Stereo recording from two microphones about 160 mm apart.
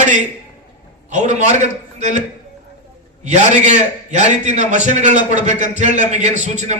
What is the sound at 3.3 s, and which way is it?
A man's voice, 50° right (ahead or behind).